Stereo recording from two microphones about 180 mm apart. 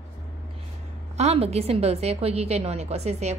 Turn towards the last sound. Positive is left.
turn(degrees=-40)  # may be behind; listen again after turning